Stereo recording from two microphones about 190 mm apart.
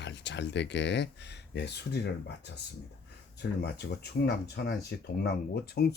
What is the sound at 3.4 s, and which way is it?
Speech, 60° left (ahead or behind).